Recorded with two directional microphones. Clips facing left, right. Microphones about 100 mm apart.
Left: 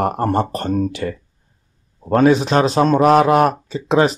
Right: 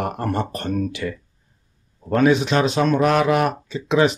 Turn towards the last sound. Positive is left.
turn(degrees=40)  # may be behind; listen again after turning